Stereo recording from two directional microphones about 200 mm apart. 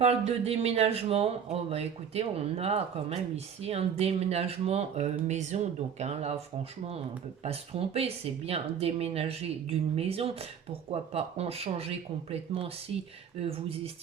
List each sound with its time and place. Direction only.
0.0 s speech: 30° right (ahead or behind)
7.4 s speech: 30° right (ahead or behind)